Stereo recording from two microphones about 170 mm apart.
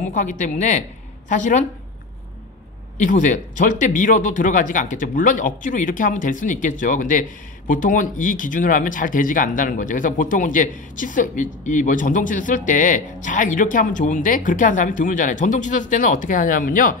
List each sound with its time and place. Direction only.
0.1 s speech: 50° left (ahead or behind)
3.0 s speech: 50° left (ahead or behind)